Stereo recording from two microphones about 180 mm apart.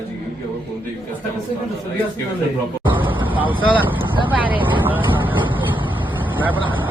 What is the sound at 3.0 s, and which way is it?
Vehicle, 30° right (ahead or behind).